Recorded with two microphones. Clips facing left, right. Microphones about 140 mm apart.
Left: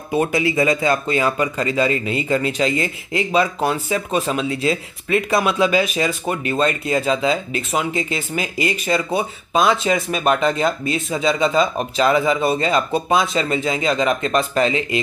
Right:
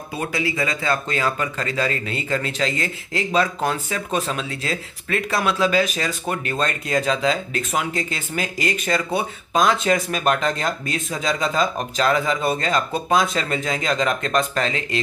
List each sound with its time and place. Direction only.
0.1 s speech: 20° left (ahead or behind)